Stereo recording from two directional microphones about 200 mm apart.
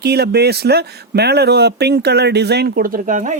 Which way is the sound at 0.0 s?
55° right (ahead or behind).